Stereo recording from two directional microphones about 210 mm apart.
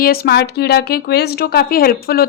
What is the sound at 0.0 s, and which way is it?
A woman's voice, 50° left (ahead or behind).